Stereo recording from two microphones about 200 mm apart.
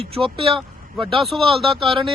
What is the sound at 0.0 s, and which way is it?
A man's voice, 30° right (ahead or behind).